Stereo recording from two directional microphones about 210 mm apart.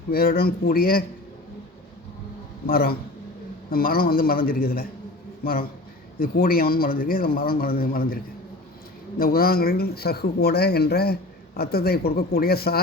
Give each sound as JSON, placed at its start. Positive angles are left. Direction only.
{"t": 0.1, "sound": "speech", "side_deg": 45}
{"t": 2.6, "sound": "a man's voice", "side_deg": 45}